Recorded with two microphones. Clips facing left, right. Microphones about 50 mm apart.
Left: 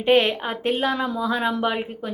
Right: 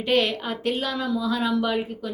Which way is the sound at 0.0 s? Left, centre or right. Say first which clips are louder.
Left 4 dB; left.